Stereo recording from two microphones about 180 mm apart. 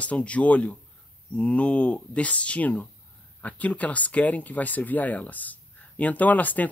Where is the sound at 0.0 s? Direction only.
5° left (ahead or behind).